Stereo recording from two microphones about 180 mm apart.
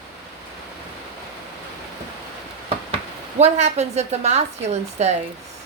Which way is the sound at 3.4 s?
35° right (ahead or behind).